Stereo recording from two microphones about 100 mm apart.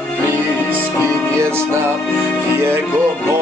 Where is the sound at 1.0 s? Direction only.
25° right (ahead or behind).